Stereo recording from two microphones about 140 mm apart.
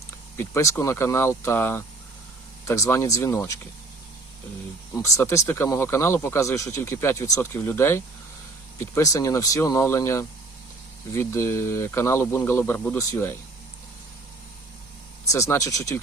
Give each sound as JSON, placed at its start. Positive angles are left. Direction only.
{"t": 0.3, "sound": "speech", "side_deg": 20}
{"t": 4.9, "sound": "speech", "side_deg": 20}
{"t": 15.2, "sound": "speech", "side_deg": 20}